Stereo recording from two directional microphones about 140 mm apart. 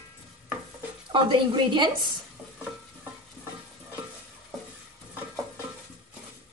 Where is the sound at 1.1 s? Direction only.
35° right (ahead or behind).